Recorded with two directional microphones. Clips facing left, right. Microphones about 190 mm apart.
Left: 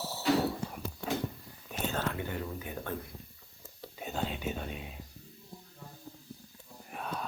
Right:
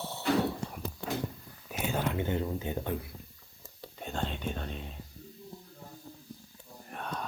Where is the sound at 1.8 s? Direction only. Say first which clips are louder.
Right 2 dB; 10° right (ahead or behind).